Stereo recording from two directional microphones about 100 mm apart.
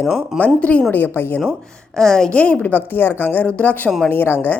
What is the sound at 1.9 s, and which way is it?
A woman's voice, 5° left (ahead or behind).